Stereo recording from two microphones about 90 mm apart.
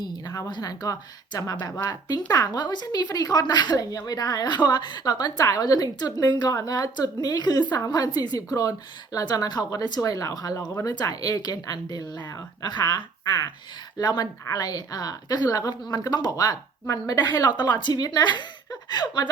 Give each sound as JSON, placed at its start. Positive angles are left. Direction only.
{"t": 0.0, "sound": "a woman's voice", "side_deg": 50}
{"t": 6.3, "sound": "a woman's voice", "side_deg": 50}
{"t": 17.6, "sound": "a woman's voice", "side_deg": 55}